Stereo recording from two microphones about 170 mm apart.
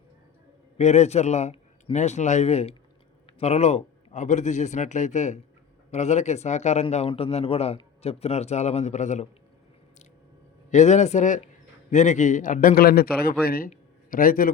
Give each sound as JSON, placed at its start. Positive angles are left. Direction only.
{"t": 0.8, "sound": "a man's voice", "side_deg": 40}
{"t": 10.7, "sound": "a man's voice", "side_deg": 45}